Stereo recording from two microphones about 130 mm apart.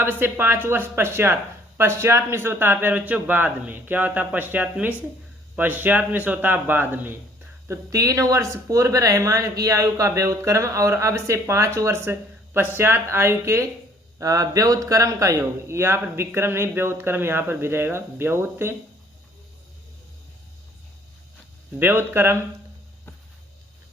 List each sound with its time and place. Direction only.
0.0 s a man's voice: 15° right (ahead or behind)
21.8 s speech: 15° right (ahead or behind)